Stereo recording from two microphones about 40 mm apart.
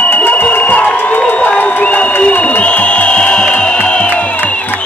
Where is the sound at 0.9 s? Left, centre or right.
Left.